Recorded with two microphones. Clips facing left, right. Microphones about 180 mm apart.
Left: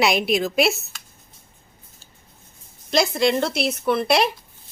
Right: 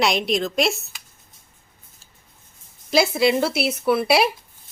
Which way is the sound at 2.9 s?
5° right (ahead or behind).